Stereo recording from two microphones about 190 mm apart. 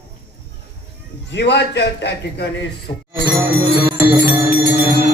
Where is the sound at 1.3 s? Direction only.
65° left (ahead or behind).